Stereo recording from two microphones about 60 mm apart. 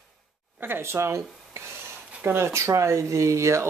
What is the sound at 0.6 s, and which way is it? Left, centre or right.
Speech, right.